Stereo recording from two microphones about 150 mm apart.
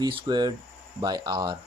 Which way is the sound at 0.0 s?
30° right (ahead or behind).